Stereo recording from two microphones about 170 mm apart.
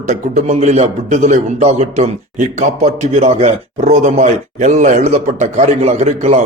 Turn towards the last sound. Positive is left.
turn(degrees=-40)  # may be behind; listen again after turning